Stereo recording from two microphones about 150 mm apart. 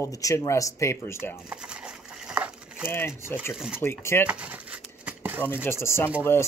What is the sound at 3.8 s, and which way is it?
Speech, 15° left (ahead or behind).